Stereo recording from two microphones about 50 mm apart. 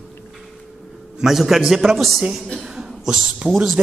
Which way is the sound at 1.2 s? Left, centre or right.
Centre.